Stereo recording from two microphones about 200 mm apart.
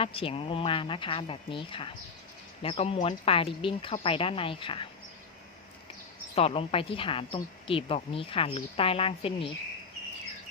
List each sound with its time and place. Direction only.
0.0 s speech: 25° left (ahead or behind)
6.3 s speech: 30° left (ahead or behind)